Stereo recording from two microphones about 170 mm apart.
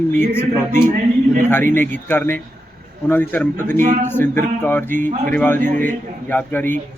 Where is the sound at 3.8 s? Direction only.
50° right (ahead or behind).